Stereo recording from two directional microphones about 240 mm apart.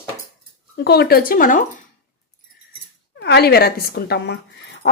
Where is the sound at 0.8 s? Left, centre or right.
Left.